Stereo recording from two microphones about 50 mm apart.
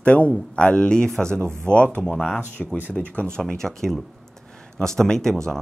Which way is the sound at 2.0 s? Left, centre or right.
Centre.